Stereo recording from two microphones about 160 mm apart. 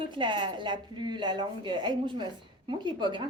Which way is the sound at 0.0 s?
30° right (ahead or behind).